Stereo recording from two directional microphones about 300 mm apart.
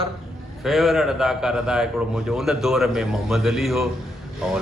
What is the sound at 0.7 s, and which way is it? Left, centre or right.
A man's voice, centre.